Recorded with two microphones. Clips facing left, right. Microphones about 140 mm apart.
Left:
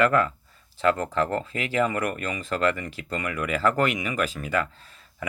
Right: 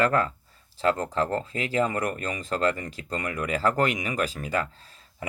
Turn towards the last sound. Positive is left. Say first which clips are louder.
# left 1 dB
turn(degrees=-35)  # may be behind; listen again after turning